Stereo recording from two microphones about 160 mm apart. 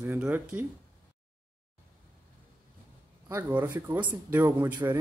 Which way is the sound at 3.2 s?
20° right (ahead or behind).